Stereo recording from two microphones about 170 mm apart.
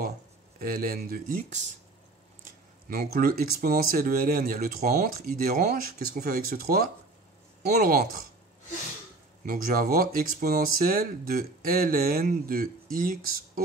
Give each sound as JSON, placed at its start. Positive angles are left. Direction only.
{"t": 0.6, "sound": "speech", "side_deg": -55}
{"t": 2.9, "sound": "speech", "side_deg": -60}
{"t": 9.5, "sound": "speech", "side_deg": -55}